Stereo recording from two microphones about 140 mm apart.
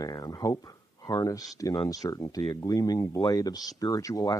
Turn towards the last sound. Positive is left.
turn(degrees=25)  # may be behind; listen again after turning